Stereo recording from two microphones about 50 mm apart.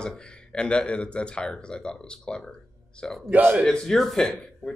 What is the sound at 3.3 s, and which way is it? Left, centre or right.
Speech, right.